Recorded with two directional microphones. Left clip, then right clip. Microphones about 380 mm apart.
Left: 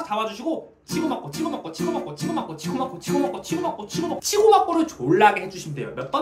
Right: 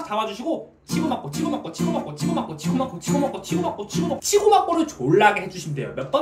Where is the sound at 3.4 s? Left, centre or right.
Centre.